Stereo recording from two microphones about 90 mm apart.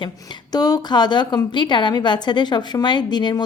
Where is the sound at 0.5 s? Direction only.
45° left (ahead or behind).